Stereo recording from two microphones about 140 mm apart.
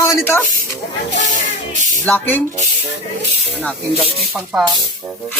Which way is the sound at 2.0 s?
10° left (ahead or behind).